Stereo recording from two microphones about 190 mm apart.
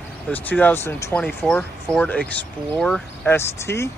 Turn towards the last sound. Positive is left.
turn(degrees=15)  # may be behind; listen again after turning